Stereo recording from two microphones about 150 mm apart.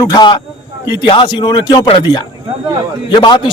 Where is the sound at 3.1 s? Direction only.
30° left (ahead or behind).